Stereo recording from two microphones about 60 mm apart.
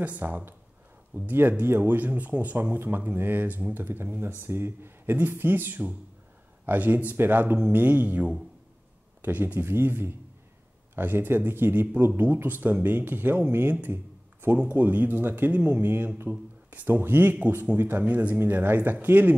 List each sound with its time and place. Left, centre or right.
0.0 s speech: right